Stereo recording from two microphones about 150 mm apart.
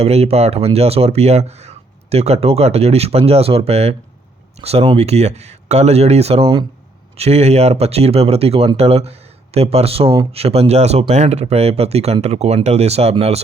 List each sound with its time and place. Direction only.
0.0 s speech: 45° right (ahead or behind)